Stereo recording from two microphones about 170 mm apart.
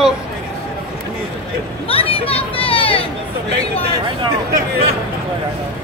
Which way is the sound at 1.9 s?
35° left (ahead or behind).